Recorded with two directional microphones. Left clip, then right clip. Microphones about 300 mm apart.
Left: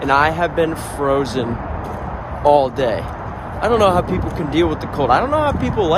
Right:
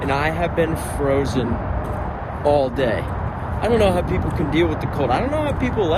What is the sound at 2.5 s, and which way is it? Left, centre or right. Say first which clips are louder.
Speech: left 4 dB; centre.